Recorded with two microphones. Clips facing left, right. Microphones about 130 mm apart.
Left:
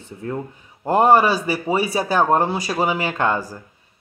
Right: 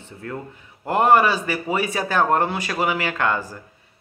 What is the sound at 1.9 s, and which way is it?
Speech, 15° left (ahead or behind).